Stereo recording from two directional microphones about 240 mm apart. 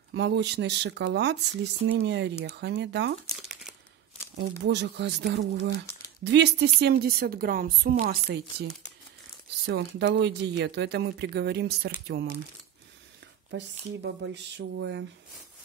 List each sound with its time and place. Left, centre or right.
0.1 s speech: right
3.3 s crumpling: centre
4.4 s a woman's voice: right
9.7 s speech: right
13.5 s speech: right